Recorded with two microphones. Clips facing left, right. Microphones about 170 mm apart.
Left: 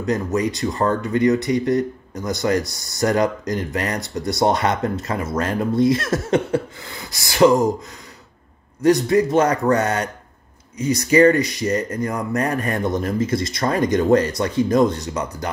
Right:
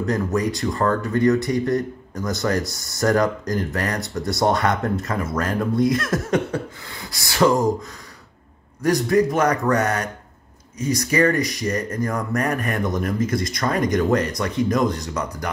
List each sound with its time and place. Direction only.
0.0 s speech: 20° left (ahead or behind)
8.8 s speech: 25° left (ahead or behind)